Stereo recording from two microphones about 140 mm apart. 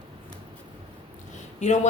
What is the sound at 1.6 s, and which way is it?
Speech, 60° left (ahead or behind).